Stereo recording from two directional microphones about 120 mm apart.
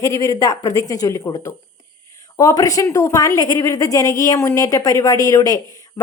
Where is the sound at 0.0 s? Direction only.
30° left (ahead or behind).